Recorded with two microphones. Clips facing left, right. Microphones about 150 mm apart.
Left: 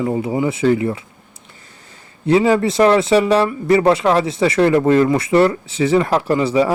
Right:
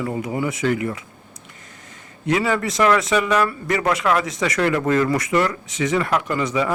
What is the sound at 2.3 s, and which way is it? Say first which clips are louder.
A man's voice: left 7 dB; 30° left (ahead or behind).